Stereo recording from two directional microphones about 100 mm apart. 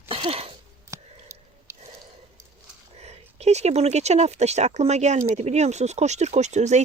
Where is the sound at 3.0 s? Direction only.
90° right.